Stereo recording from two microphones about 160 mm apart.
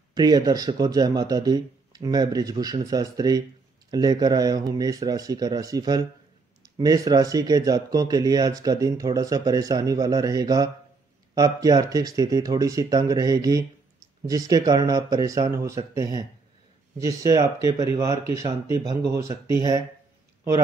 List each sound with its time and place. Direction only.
0.1 s speech: 25° right (ahead or behind)